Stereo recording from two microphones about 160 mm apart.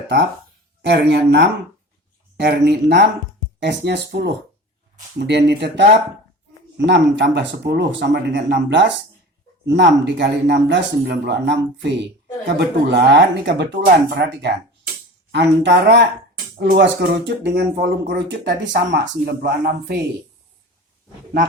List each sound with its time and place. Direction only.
0.8 s speech: 90° right
18.9 s speech: 80° right